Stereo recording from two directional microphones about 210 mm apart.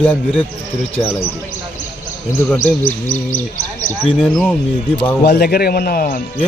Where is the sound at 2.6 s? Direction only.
40° left (ahead or behind).